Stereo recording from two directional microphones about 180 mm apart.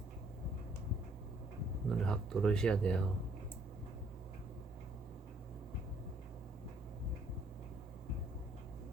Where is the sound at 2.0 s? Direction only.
5° left (ahead or behind).